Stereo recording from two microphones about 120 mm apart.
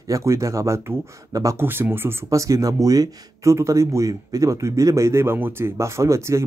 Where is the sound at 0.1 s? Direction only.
25° right (ahead or behind).